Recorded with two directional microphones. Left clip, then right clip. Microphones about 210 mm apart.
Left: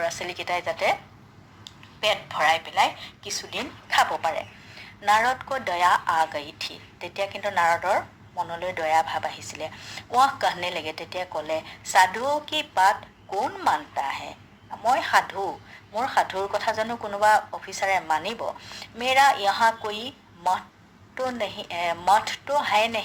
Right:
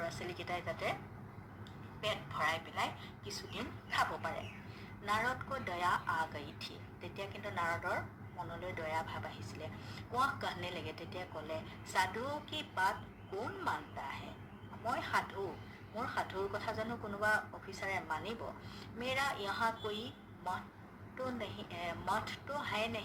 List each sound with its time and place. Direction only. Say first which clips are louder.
0.0 s a woman's voice: left 14 dB; 50° left (ahead or behind)